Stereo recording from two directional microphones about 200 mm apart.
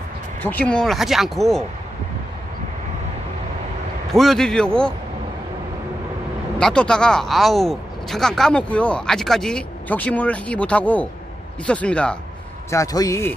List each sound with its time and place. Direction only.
0.4 s speech: 10° left (ahead or behind)
4.1 s speech: centre (ahead or behind)
6.6 s speech: 5° left (ahead or behind)
12.7 s a man's voice: 15° left (ahead or behind)